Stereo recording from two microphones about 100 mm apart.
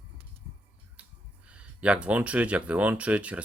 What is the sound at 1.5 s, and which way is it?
Speech, 10° right (ahead or behind).